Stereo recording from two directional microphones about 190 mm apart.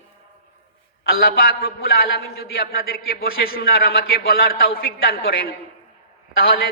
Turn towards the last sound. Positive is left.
turn(degrees=50)  # may be behind; listen again after turning